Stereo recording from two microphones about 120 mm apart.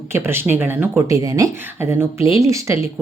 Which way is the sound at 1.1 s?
30° right (ahead or behind).